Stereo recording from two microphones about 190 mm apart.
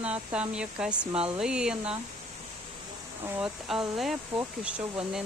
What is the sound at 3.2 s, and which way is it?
Speech, 10° right (ahead or behind).